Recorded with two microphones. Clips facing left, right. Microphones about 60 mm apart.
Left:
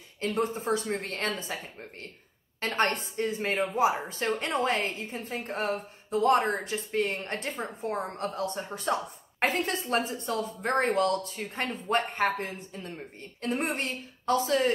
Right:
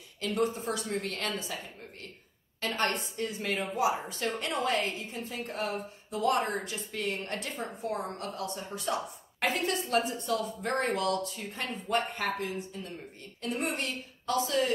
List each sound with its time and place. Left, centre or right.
0.2 s a woman's voice: left